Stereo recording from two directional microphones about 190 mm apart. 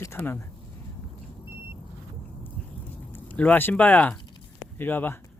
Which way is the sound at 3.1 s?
10° left (ahead or behind).